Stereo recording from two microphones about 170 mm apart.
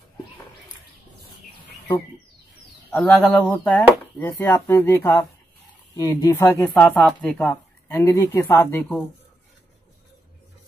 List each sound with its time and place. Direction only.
3.0 s speech: 5° left (ahead or behind)